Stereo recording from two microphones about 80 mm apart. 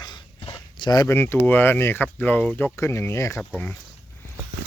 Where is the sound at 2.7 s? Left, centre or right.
Left.